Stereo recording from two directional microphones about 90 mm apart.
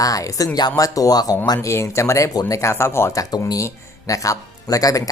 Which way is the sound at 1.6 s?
30° left (ahead or behind).